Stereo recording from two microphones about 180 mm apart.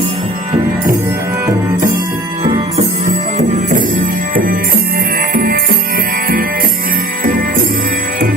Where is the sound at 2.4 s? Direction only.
35° right (ahead or behind); by 8.3 s 55° right (ahead or behind).